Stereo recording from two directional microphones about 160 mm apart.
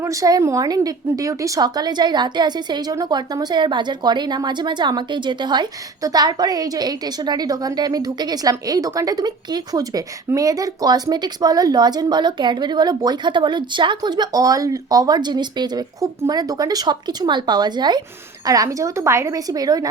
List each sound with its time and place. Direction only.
0.0 s speech: 20° right (ahead or behind)